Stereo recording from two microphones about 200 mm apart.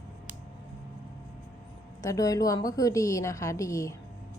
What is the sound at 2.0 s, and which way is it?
A woman's voice, 15° left (ahead or behind).